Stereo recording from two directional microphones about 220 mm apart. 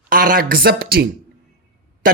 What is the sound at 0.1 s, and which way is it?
Speech, 40° right (ahead or behind).